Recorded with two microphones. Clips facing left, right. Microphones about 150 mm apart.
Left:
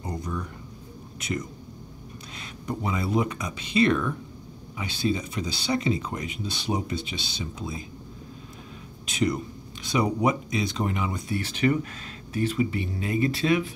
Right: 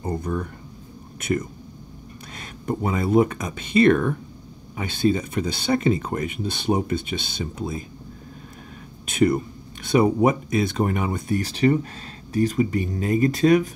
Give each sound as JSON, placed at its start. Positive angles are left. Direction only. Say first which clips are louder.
{"t": 0.0, "sound": "a sound", "louder": "right 6 dB", "side_deg": -55}
{"t": 1.2, "sound": "speech", "louder": "right 7 dB", "side_deg": -55}
{"t": 2.6, "sound": "speech", "louder": "right 5 dB", "side_deg": -50}
{"t": 9.0, "sound": "speech", "louder": "right 6 dB", "side_deg": -55}
{"t": 11.4, "sound": "speech", "louder": "right 3 dB", "side_deg": -35}